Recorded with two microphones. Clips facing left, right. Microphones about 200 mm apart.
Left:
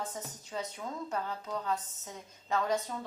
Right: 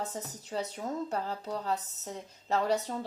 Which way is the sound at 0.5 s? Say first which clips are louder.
Right 4 dB; 35° right (ahead or behind).